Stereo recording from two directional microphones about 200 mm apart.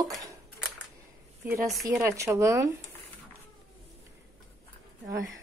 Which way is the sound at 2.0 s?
15° right (ahead or behind).